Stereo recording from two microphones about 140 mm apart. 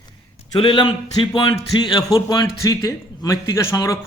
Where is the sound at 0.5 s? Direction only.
35° left (ahead or behind).